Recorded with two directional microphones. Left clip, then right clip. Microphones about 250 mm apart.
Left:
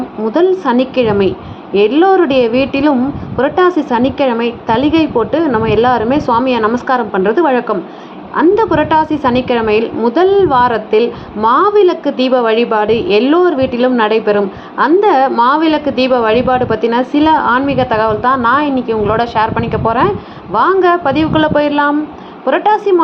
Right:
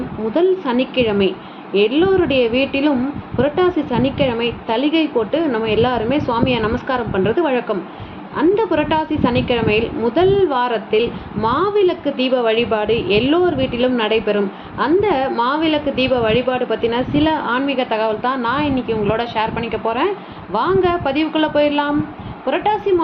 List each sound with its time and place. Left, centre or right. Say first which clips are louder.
0.6 s a woman's voice: left 5 dB; centre